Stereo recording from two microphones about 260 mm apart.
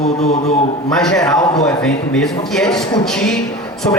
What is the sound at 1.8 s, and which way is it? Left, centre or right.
A man's voice, centre.